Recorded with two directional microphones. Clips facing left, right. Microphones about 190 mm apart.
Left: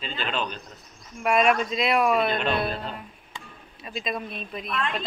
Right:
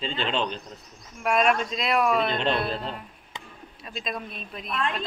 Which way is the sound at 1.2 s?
Centre (ahead or behind).